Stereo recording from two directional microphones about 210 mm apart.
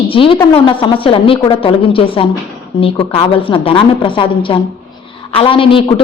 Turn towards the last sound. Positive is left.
turn(degrees=25)  # may be behind; listen again after turning